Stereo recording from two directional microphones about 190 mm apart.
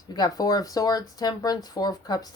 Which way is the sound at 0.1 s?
20° left (ahead or behind).